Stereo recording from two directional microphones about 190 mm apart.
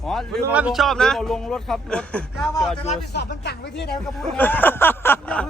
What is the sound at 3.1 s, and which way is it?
Speech, 60° left (ahead or behind).